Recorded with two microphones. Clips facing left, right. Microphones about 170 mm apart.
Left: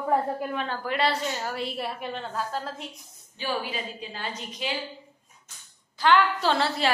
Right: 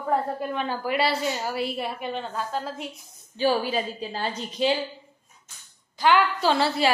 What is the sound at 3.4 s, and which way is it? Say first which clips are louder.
A woman's voice: right 7 dB; 35° right (ahead or behind).